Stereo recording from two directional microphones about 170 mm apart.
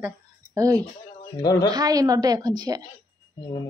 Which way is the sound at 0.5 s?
20° right (ahead or behind).